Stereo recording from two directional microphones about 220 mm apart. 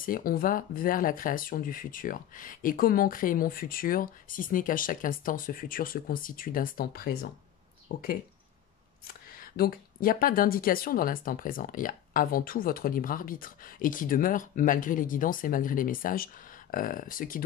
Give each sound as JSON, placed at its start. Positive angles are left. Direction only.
{"t": 0.0, "sound": "speech", "side_deg": 40}